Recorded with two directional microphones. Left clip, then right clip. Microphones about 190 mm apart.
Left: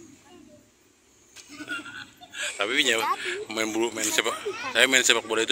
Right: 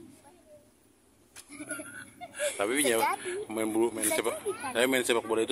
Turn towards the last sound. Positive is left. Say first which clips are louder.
# left 5 dB
turn(degrees=-20)  # may be behind; listen again after turning